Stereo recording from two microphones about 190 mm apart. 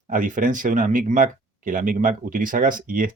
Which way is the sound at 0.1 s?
45° right (ahead or behind).